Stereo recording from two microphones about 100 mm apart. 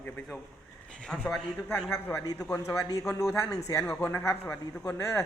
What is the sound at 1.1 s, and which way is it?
Speech, 10° left (ahead or behind).